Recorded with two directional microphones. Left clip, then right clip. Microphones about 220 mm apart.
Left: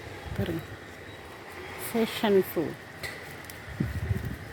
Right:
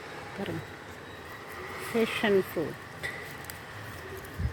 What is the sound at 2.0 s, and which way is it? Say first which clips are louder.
Speech: even; 20° left (ahead or behind).